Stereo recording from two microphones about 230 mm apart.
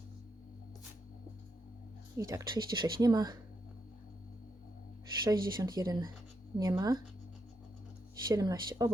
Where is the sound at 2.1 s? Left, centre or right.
Centre.